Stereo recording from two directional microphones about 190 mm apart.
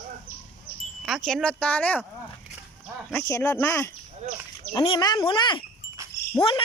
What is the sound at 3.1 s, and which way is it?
Speech, 15° left (ahead or behind).